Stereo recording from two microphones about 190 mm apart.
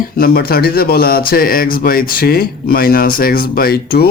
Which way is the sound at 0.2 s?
50° left (ahead or behind).